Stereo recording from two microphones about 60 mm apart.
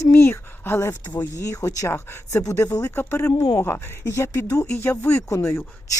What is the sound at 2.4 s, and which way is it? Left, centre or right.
Speech, left.